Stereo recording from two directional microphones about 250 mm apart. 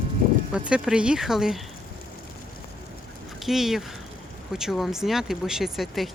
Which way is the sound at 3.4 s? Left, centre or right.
Centre.